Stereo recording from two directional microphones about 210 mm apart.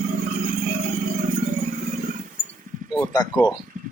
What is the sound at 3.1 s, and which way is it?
Speech, 20° left (ahead or behind).